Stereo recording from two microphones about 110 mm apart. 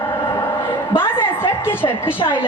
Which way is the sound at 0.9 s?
20° left (ahead or behind).